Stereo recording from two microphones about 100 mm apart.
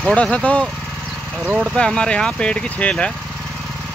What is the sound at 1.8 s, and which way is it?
Speech, 10° left (ahead or behind).